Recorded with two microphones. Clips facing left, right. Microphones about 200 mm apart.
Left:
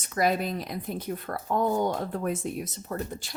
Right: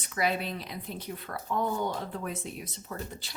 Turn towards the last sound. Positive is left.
turn(degrees=45)  # may be behind; listen again after turning